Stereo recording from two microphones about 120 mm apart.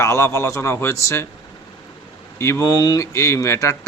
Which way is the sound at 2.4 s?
25° left (ahead or behind).